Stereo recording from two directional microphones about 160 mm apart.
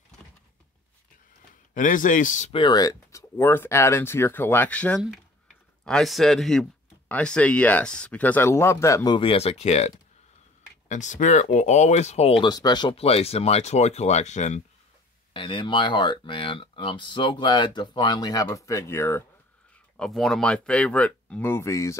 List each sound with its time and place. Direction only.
1.7 s speech: 55° left (ahead or behind)
2.5 s speech: 30° left (ahead or behind); by 14.6 s 45° left (ahead or behind)
15.3 s speech: 30° left (ahead or behind)
20.0 s speech: 5° left (ahead or behind); by 21.9 s 20° left (ahead or behind)